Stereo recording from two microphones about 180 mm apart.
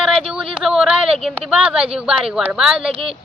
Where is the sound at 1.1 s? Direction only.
35° right (ahead or behind).